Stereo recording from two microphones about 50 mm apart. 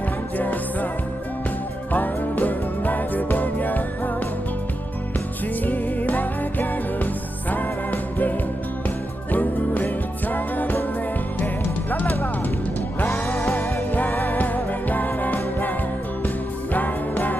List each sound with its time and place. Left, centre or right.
0.3 s music: left
1.9 s music: left
5.6 s music: left
9.3 s music: left
11.9 s music: left
13.1 s music: left
14.3 s music: left
16.7 s music: left